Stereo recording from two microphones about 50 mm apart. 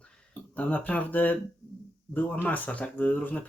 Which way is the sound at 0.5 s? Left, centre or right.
Left.